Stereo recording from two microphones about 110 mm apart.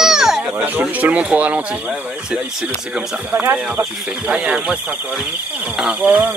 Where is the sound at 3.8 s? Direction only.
10° right (ahead or behind).